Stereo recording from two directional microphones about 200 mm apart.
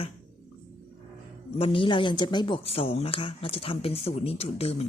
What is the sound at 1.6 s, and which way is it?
Speech, 25° left (ahead or behind).